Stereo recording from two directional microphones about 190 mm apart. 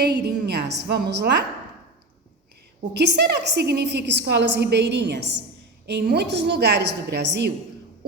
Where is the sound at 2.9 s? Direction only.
60° right (ahead or behind).